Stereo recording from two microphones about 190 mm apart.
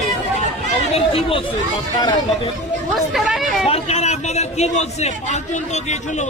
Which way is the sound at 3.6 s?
35° left (ahead or behind).